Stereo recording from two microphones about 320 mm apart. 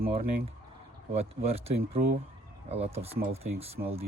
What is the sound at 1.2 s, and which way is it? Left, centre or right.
Speech, centre.